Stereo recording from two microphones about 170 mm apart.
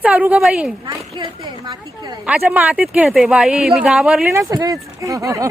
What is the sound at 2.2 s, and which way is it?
Speech, 10° right (ahead or behind).